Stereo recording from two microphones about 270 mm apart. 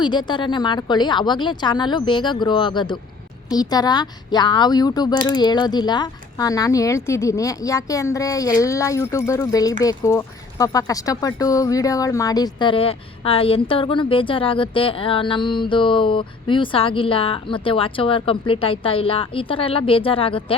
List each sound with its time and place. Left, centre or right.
0.0 s speech: centre